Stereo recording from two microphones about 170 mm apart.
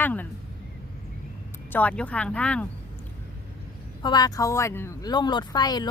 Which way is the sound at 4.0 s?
25° left (ahead or behind).